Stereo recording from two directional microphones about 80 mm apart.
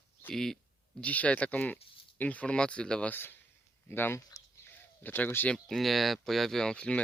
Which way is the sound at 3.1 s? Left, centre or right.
Left.